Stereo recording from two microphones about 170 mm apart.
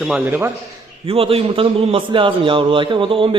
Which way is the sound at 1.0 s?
35° right (ahead or behind).